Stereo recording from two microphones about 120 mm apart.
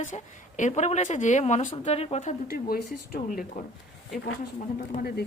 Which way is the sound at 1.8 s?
60° left (ahead or behind).